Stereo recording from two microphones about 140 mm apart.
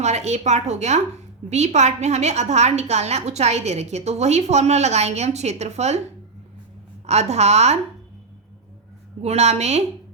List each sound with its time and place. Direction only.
0.0 s a woman's voice: 55° right (ahead or behind)
7.1 s a woman's voice: 50° right (ahead or behind)
9.2 s a woman's voice: 50° right (ahead or behind)